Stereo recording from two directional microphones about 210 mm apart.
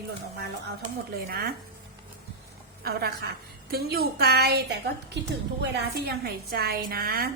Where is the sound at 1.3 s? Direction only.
45° right (ahead or behind).